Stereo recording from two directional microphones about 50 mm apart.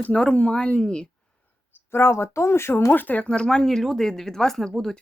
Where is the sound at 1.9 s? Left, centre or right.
Left.